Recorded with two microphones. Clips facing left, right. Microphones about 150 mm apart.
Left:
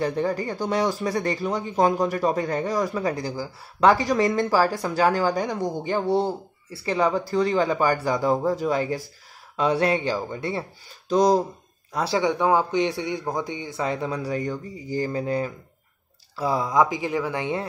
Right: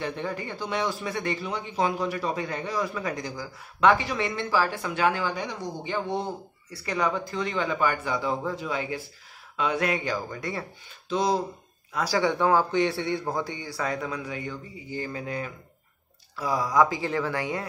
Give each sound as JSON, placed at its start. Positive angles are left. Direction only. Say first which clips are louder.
{"t": 0.0, "sound": "a man's voice", "louder": "left 7 dB", "side_deg": 40}
{"t": 11.1, "sound": "speech", "louder": "left 6 dB", "side_deg": 40}
{"t": 11.9, "sound": "a man's voice", "louder": "left 2 dB", "side_deg": 25}